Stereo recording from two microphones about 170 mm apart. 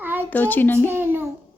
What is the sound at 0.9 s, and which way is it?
Speech, 10° right (ahead or behind).